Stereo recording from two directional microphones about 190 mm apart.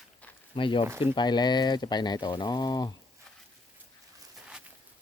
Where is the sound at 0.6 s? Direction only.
25° left (ahead or behind).